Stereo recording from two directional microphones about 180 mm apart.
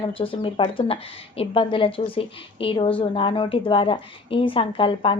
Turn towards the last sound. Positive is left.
turn(degrees=30)  # may be behind; listen again after turning